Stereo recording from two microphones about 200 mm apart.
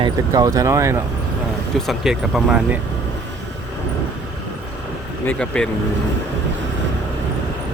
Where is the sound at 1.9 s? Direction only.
Centre (ahead or behind).